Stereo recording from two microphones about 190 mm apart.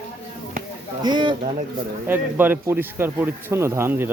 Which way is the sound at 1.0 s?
25° right (ahead or behind).